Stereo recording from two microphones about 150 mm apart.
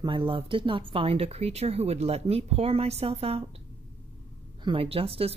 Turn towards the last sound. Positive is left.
turn(degrees=-40)  # may be behind; listen again after turning